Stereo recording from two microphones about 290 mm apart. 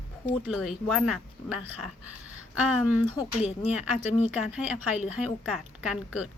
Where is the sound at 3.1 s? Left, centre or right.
Left.